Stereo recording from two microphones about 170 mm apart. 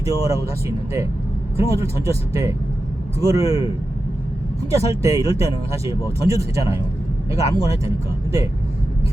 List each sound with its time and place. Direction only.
0.0 s speech: 20° right (ahead or behind)
1.5 s speech: 15° right (ahead or behind)
4.7 s speech: 20° right (ahead or behind)